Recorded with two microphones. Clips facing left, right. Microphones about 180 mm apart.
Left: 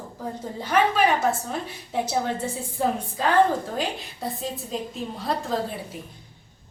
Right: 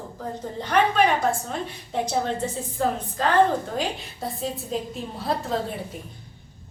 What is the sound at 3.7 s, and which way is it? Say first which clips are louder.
A woman's voice: right 1 dB; centre (ahead or behind).